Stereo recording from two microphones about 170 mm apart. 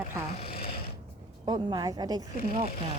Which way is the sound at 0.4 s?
60° left (ahead or behind).